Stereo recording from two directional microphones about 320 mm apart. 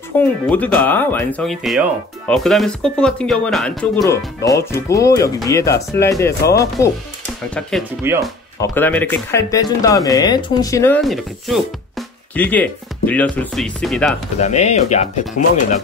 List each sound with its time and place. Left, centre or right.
0.2 s speech: centre
7.5 s speech: centre
8.5 s speech: centre
14.4 s speech: left